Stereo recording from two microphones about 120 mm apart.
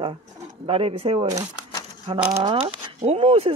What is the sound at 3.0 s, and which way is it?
Speech, 60° right (ahead or behind).